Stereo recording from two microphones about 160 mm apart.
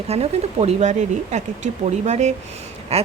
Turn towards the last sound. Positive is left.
turn(degrees=-40)  # may be behind; listen again after turning